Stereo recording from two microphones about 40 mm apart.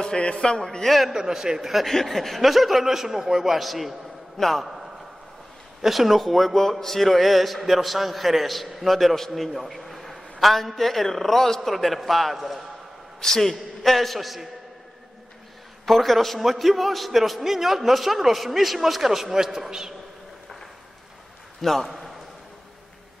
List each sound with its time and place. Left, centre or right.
0.0 s speech: centre
1.1 s a man's voice: centre
1.9 s a man's voice: centre
5.8 s a man's voice: centre
13.2 s a man's voice: centre
15.8 s a man's voice: centre
21.5 s a man's voice: centre